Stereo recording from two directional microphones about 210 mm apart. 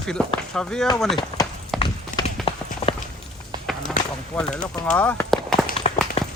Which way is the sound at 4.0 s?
35° left (ahead or behind).